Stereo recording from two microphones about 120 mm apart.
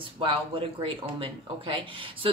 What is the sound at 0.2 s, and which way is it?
A woman's voice, 45° right (ahead or behind).